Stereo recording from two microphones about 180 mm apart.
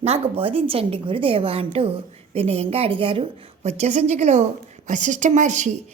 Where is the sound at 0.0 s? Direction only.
35° right (ahead or behind).